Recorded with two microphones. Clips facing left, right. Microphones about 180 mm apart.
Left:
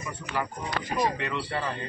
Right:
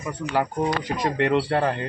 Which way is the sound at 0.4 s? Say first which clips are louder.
Right 8 dB; 75° right (ahead or behind).